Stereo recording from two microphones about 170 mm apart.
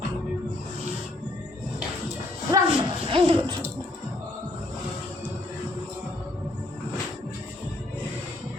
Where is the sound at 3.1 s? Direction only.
30° right (ahead or behind).